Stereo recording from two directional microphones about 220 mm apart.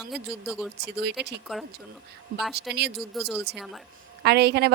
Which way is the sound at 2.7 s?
Centre (ahead or behind).